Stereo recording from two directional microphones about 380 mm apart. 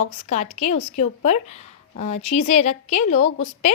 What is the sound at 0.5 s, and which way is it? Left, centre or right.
Speech, centre.